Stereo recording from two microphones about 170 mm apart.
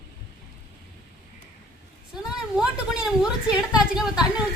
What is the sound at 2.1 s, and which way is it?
A woman's voice, 5° right (ahead or behind).